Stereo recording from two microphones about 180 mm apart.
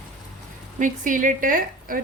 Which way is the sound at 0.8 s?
45° right (ahead or behind).